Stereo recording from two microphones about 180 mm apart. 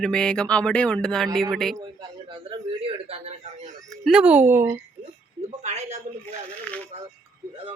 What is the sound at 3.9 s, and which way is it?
Speech, centre (ahead or behind).